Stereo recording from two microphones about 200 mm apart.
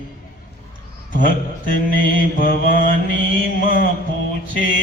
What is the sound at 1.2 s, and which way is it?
Mantra, 45° left (ahead or behind).